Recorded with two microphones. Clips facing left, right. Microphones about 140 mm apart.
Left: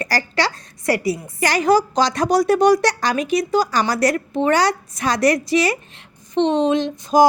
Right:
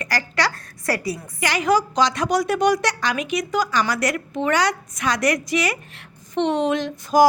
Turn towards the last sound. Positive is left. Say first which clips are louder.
# left 2 dB
turn(degrees=25)  # may be behind; listen again after turning